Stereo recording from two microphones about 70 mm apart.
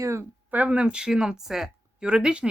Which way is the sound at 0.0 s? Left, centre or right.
Right.